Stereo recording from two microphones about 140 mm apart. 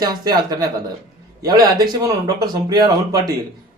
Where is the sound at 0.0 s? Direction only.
30° right (ahead or behind).